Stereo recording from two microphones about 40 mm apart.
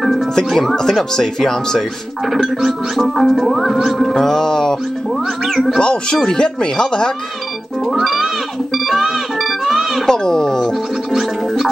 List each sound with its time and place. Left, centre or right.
0.0 s music: centre
0.6 s speech: centre
2.2 s music: centre
4.1 s speech: centre
5.4 s music: centre
5.8 s speech: left
7.8 s music: centre
10.0 s speech: centre
11.1 s music: centre